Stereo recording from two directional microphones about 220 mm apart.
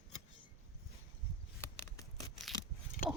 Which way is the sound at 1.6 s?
15° left (ahead or behind).